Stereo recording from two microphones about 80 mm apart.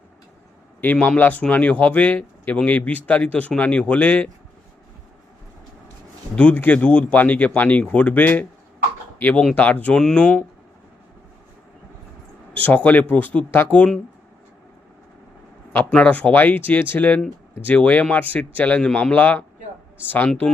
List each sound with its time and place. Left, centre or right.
0.8 s speech: left
6.3 s speech: centre
12.5 s speech: centre
15.9 s speech: centre